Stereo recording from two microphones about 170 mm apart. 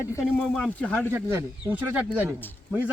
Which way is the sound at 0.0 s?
15° left (ahead or behind).